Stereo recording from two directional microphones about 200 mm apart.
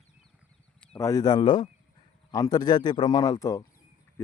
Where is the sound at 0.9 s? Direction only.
15° left (ahead or behind).